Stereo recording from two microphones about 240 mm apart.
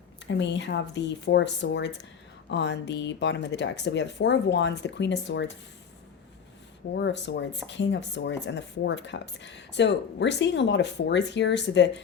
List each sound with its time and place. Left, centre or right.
0.3 s speech: left
6.9 s speech: left